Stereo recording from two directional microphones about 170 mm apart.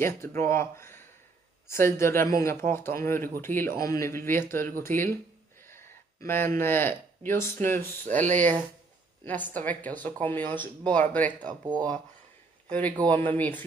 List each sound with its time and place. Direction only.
0.0 s speech: 15° left (ahead or behind)
5.7 s a sound: 15° left (ahead or behind)
6.6 s speech: 15° left (ahead or behind)
11.4 s speech: 25° right (ahead or behind)
12.6 s a man's voice: 10° left (ahead or behind)